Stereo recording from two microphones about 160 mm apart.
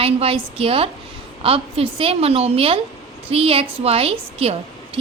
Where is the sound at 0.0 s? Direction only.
35° right (ahead or behind).